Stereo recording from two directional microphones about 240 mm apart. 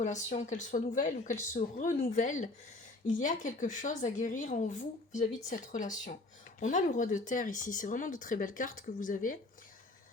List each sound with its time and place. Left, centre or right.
0.0 s speech: left